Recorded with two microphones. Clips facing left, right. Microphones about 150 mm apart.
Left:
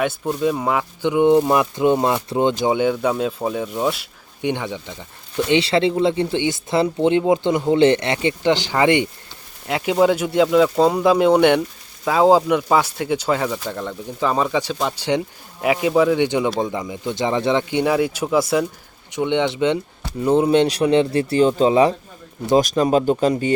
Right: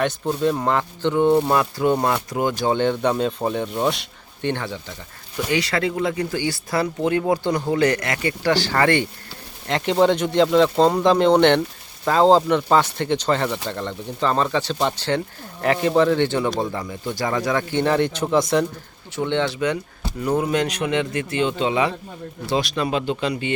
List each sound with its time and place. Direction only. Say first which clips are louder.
0.0 s speech: left 1 dB; 5° left (ahead or behind); by 2.6 s 25° left (ahead or behind)
2.6 s speech: left 1 dB; 10° left (ahead or behind)
9.6 s speech: left 1 dB; 5° left (ahead or behind)
19.1 s a man's voice: left 3 dB; 15° left (ahead or behind); by 23.6 s 40° left (ahead or behind)